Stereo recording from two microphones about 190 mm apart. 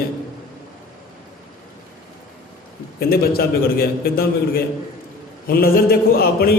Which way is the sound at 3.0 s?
55° left (ahead or behind).